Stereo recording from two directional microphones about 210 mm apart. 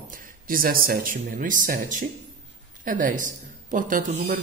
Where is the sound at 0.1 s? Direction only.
40° right (ahead or behind).